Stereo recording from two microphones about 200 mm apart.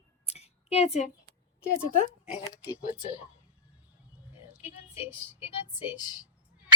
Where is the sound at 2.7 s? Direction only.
5° right (ahead or behind).